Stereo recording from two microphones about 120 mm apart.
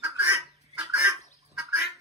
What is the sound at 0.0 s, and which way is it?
Fowl, 25° right (ahead or behind).